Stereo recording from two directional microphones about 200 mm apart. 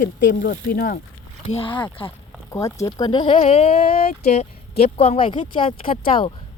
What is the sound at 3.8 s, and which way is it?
Speech, 50° left (ahead or behind).